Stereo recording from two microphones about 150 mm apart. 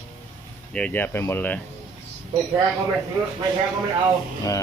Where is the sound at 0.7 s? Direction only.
10° left (ahead or behind).